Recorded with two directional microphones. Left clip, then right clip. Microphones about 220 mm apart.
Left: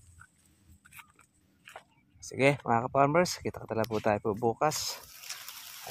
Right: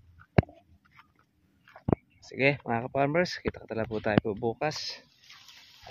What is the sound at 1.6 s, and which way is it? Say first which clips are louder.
Whispering: left 4 dB; 30° left (ahead or behind).